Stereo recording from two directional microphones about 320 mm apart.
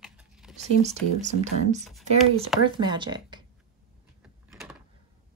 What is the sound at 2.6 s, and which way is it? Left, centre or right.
Speech, centre.